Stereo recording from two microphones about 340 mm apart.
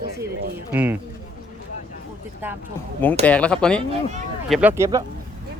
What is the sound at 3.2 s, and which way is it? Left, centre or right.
Speech, centre.